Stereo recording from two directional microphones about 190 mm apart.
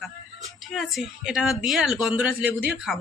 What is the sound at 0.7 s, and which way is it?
A woman's voice, centre (ahead or behind).